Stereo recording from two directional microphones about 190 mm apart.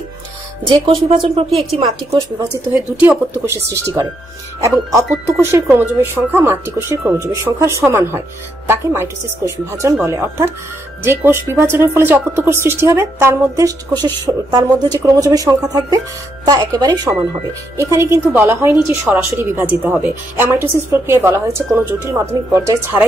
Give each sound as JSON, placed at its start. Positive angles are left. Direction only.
{"t": 0.7, "sound": "a woman's voice", "side_deg": -25}
{"t": 2.7, "sound": "a woman's voice", "side_deg": -10}